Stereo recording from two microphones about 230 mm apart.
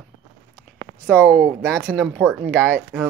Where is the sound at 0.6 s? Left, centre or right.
Centre.